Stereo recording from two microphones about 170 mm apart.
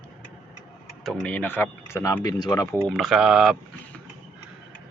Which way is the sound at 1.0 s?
5° left (ahead or behind).